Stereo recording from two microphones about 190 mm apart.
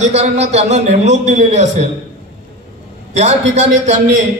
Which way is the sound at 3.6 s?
40° right (ahead or behind).